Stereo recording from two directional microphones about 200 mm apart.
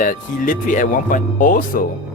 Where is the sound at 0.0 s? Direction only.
40° left (ahead or behind).